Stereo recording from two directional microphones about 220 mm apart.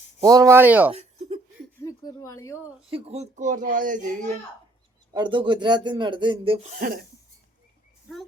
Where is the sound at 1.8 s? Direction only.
15° left (ahead or behind).